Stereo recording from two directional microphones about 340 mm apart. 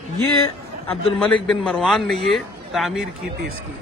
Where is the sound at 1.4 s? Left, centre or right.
Centre.